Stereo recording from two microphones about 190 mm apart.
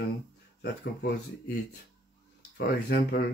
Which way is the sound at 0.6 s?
60° left (ahead or behind).